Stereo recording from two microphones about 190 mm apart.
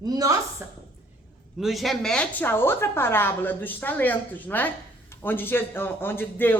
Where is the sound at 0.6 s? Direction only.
15° right (ahead or behind).